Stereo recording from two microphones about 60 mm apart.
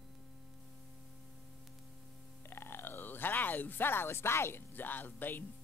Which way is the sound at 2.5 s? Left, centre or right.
Left.